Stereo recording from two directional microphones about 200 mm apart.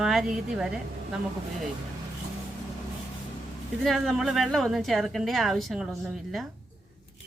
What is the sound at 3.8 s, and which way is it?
A woman's voice, centre (ahead or behind).